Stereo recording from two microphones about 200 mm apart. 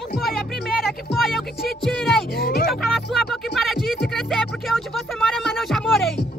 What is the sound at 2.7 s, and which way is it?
Music, centre (ahead or behind).